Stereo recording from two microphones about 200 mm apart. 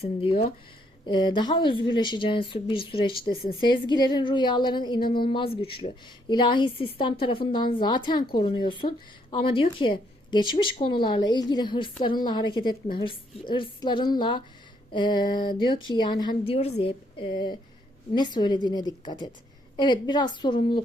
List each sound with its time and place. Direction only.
0.0 s a woman's voice: 30° left (ahead or behind)